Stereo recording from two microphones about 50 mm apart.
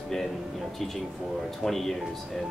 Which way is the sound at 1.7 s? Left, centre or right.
Centre.